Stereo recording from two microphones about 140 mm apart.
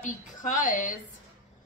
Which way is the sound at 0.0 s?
65° left (ahead or behind).